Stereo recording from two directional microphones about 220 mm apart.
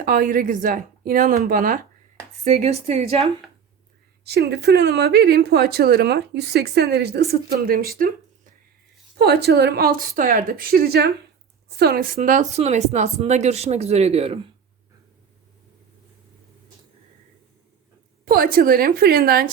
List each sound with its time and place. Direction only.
0.0 s a woman's voice: 40° right (ahead or behind)
4.2 s speech: 45° right (ahead or behind)
9.1 s speech: 45° right (ahead or behind); by 14.3 s 25° right (ahead or behind)
18.3 s speech: 40° right (ahead or behind)